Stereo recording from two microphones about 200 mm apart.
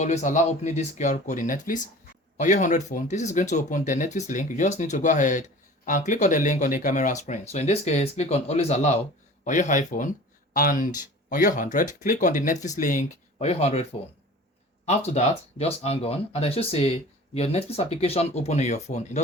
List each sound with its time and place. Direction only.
0.0 s speech: 35° left (ahead or behind)
14.8 s speech: 30° left (ahead or behind)